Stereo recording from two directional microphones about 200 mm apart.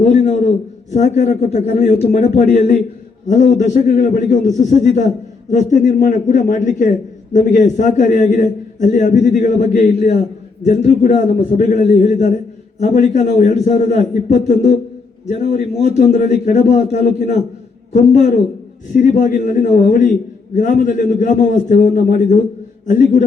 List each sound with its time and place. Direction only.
0.0 s a man's voice: 35° left (ahead or behind)